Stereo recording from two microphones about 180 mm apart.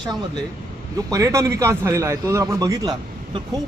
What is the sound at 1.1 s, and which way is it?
A man's voice, 20° right (ahead or behind).